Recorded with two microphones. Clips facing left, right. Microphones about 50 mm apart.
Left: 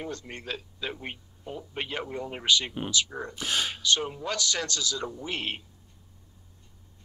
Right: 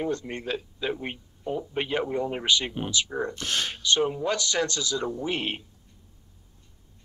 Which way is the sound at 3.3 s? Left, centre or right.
Centre.